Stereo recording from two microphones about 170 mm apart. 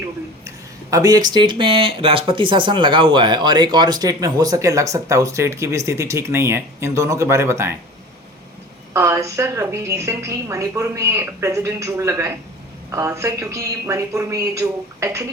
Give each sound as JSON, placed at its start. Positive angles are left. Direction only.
{"t": 0.4, "sound": "speech", "side_deg": -20}
{"t": 8.9, "sound": "a woman's voice", "side_deg": -15}